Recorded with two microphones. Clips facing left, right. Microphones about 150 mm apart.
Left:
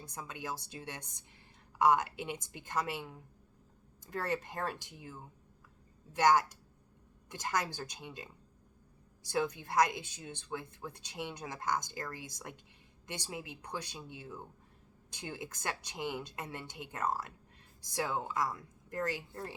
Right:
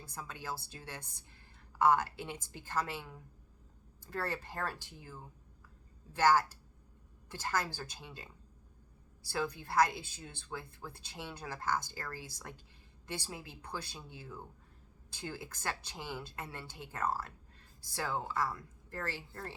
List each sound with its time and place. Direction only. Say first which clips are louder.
0.1 s a woman's voice: left 1 dB; 15° left (ahead or behind)
9.3 s a woman's voice: left 2 dB; 20° left (ahead or behind)